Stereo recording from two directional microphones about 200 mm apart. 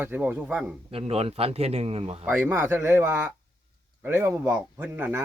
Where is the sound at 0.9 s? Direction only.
30° right (ahead or behind).